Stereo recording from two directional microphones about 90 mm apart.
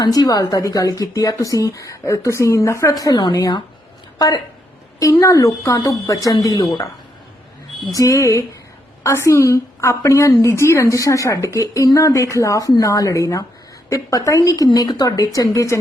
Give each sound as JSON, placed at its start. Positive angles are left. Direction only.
{"t": 0.0, "sound": "a woman's voice", "side_deg": 45}
{"t": 4.9, "sound": "a woman's voice", "side_deg": 35}
{"t": 7.9, "sound": "a woman's voice", "side_deg": 35}